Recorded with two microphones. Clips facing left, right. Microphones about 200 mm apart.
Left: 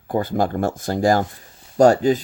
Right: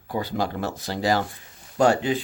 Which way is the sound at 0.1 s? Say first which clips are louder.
Left 6 dB; 50° left (ahead or behind).